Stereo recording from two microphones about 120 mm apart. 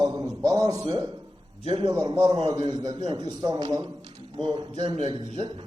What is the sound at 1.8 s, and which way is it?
A man's voice, 35° right (ahead or behind).